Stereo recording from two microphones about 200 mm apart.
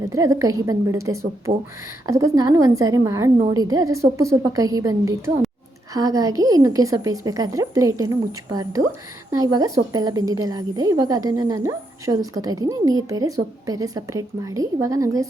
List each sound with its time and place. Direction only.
0.0 s a woman's voice: 15° right (ahead or behind)